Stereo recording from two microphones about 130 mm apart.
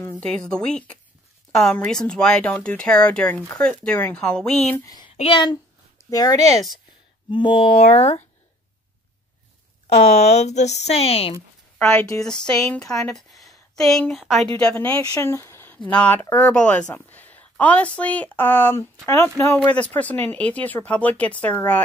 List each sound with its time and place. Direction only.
0.5 s speech: 5° left (ahead or behind)
4.7 s speech: 25° left (ahead or behind)
5.0 s a child's voice: 45° left (ahead or behind)
7.2 s speech: 40° left (ahead or behind); by 8.3 s 60° left (ahead or behind)
9.8 s speech: 60° left (ahead or behind)
11.8 s a woman's voice: 5° left (ahead or behind)
15.0 s a woman's voice: 25° left (ahead or behind)